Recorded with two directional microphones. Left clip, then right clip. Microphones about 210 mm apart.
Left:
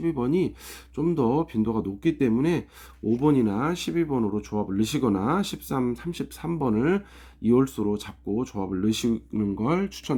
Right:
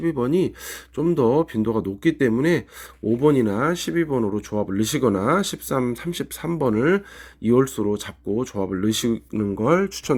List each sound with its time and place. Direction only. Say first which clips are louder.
0.0 s speech: right 4 dB; 15° right (ahead or behind)